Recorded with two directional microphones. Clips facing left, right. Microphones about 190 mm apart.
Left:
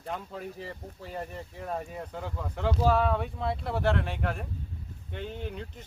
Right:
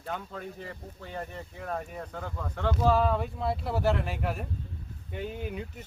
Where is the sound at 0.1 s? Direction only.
Centre (ahead or behind).